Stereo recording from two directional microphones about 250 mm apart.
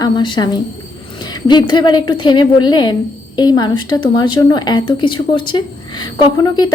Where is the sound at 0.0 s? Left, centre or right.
Centre.